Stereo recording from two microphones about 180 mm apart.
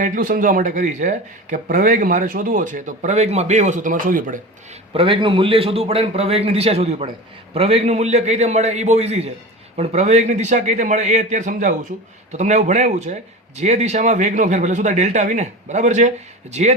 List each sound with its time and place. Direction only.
0.0 s speech: 50° right (ahead or behind)
4.9 s speech: 30° right (ahead or behind)